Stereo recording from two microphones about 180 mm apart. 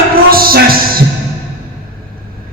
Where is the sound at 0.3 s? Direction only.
55° right (ahead or behind).